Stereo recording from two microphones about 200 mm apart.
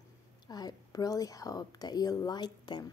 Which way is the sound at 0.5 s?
20° left (ahead or behind).